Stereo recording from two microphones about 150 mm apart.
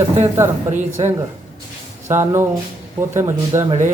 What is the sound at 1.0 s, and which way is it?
Speech, 45° right (ahead or behind).